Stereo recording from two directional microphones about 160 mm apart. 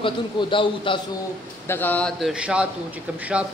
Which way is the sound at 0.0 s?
30° left (ahead or behind).